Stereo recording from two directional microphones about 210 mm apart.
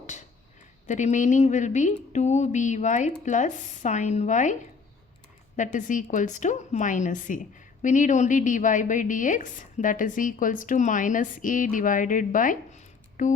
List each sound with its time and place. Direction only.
0.9 s a woman's voice: 35° left (ahead or behind)
5.5 s a woman's voice: 40° left (ahead or behind)